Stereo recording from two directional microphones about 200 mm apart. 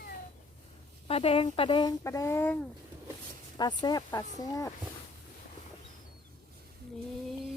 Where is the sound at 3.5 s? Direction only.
20° left (ahead or behind).